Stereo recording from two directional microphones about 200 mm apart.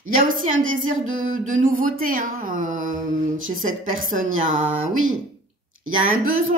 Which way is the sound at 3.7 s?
85° right.